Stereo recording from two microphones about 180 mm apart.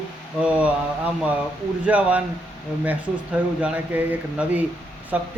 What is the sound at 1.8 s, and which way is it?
A man's voice, 10° right (ahead or behind).